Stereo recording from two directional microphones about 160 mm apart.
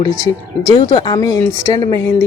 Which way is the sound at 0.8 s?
30° left (ahead or behind).